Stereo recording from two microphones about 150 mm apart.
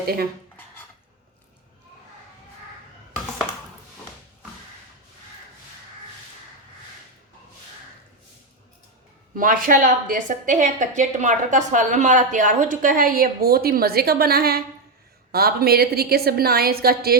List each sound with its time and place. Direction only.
9.3 s a woman's voice: 65° right (ahead or behind); by 17.2 s 90° right